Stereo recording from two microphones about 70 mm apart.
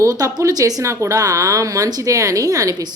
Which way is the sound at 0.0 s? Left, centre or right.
Right.